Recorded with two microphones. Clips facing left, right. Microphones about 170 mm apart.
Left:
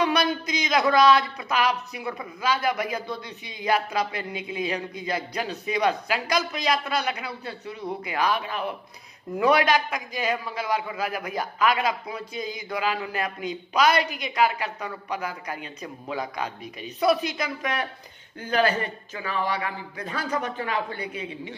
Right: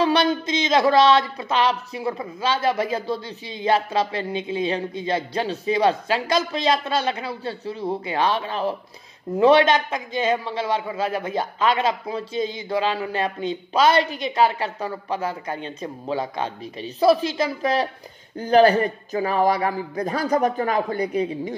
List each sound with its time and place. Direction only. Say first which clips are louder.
0.0 s a man's voice: right 4 dB; 30° right (ahead or behind)